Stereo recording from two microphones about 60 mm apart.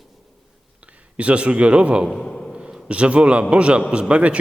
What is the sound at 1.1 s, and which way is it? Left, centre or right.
Speech, right.